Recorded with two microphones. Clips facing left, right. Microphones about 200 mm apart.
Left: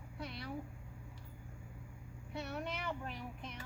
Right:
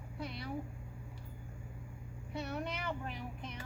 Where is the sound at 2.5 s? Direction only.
Centre (ahead or behind).